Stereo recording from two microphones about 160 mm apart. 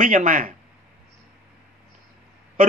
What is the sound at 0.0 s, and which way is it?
Speech, 55° right (ahead or behind).